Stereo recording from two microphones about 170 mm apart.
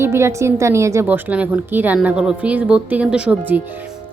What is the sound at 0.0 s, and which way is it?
A woman's voice, 15° right (ahead or behind).